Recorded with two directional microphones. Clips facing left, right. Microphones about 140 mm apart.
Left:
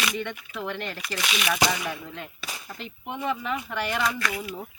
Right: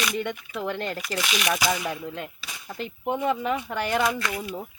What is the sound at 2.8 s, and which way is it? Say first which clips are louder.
Speech: right 6 dB; 35° right (ahead or behind).